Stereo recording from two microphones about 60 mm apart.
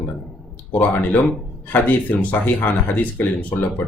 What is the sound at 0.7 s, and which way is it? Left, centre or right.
Speech, left.